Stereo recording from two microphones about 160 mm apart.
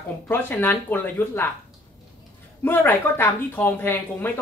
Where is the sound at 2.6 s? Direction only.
15° left (ahead or behind).